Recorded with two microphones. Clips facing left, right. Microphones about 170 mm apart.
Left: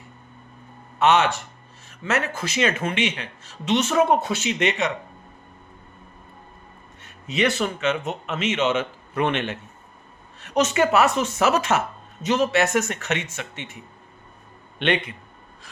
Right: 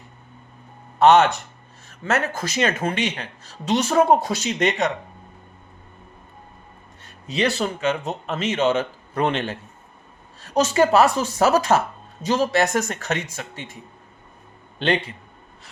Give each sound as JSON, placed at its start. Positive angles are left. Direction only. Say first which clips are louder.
{"t": 0.9, "sound": "speech", "louder": "right 4 dB", "side_deg": -40}
{"t": 7.3, "sound": "speech", "louder": "even", "side_deg": -35}